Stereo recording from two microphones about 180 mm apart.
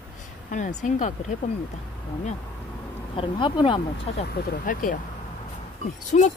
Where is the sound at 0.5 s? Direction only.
45° left (ahead or behind).